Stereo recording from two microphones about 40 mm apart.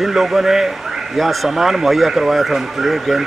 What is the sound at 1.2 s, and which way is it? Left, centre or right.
Speech, centre.